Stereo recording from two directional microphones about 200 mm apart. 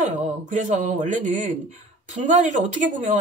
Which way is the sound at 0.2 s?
40° right (ahead or behind).